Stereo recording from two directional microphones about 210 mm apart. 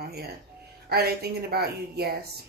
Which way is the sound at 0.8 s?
50° right (ahead or behind).